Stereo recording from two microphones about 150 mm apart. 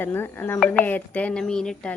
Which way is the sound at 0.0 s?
15° left (ahead or behind).